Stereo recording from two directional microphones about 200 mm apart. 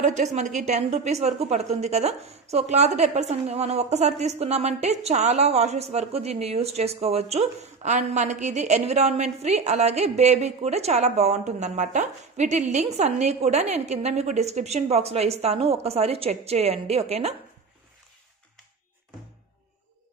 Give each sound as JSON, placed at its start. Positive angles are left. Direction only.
{"t": 0.0, "sound": "a woman's voice", "side_deg": -35}